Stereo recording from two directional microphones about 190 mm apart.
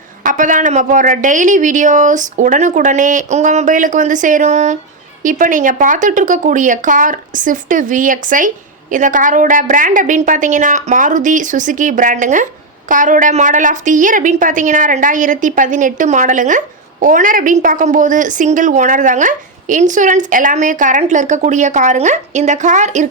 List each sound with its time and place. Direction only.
0.2 s a woman's voice: 45° right (ahead or behind)